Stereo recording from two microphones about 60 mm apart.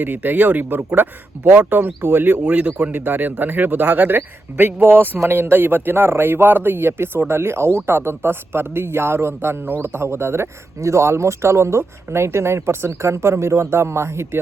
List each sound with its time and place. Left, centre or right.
0.0 s speech: right
2.4 s speech: right